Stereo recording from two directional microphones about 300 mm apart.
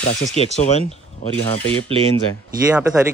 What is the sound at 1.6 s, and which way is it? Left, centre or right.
Speech, centre.